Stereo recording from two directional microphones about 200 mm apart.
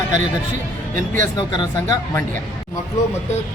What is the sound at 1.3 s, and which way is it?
Speech, 20° left (ahead or behind).